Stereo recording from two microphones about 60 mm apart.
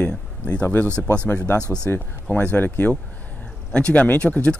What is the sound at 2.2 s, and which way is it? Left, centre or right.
Speech, left.